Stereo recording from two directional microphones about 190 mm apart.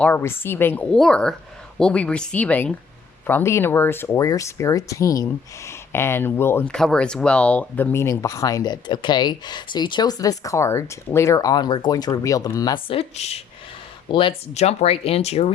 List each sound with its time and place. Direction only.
0.0 s speech: 10° left (ahead or behind); by 15.5 s 35° left (ahead or behind)